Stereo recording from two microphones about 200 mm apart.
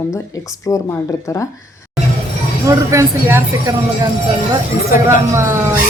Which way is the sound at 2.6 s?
15° right (ahead or behind).